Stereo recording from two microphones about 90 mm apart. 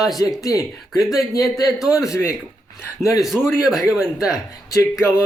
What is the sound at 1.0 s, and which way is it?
Speech, centre (ahead or behind).